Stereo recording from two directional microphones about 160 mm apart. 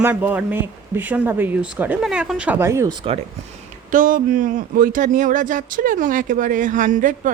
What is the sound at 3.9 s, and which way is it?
Speech, 55° right (ahead or behind).